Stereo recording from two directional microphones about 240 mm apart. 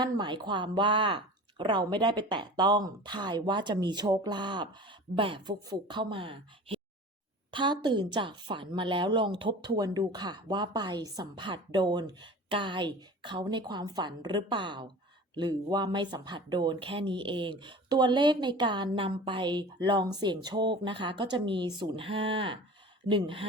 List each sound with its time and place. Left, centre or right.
0.0 s a woman's voice: centre